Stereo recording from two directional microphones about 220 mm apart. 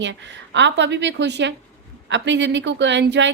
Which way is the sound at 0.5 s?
55° right (ahead or behind).